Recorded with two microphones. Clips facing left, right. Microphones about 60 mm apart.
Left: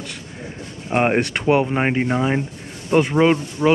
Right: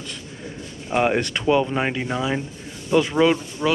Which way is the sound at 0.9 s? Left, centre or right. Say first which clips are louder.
Left 2 dB; left.